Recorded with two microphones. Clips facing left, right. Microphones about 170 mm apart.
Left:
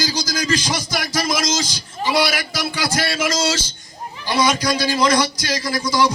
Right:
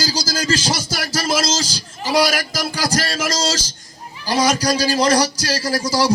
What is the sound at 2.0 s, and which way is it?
A man's voice, 40° right (ahead or behind).